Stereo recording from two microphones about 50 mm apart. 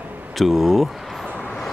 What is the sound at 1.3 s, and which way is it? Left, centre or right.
Vehicle, centre.